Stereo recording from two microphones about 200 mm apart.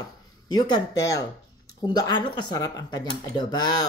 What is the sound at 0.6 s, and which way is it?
Speech, 20° left (ahead or behind).